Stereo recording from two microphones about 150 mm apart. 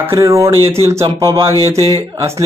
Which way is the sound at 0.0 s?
20° right (ahead or behind).